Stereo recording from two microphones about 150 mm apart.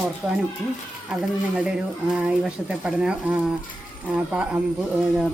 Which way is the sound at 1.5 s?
5° right (ahead or behind).